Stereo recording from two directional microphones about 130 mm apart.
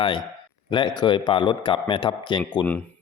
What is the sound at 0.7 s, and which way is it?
A man's voice, 40° left (ahead or behind).